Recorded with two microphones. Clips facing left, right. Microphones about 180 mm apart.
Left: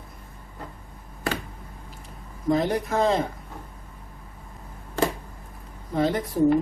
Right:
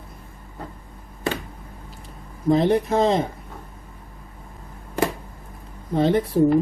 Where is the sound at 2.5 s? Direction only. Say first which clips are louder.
Right 5 dB; 25° right (ahead or behind).